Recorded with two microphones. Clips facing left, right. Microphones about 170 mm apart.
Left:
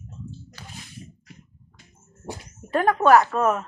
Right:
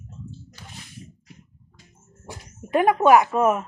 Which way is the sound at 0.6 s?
75° left (ahead or behind).